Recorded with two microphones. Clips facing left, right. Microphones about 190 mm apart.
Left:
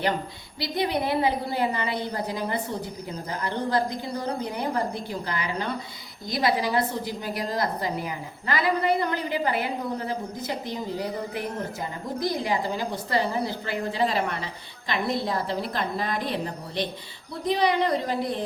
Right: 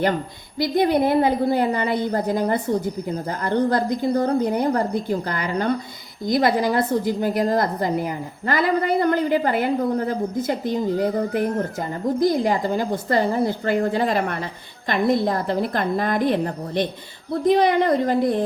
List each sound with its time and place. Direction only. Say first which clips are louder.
0.6 s a woman's voice: right 8 dB; 50° right (ahead or behind)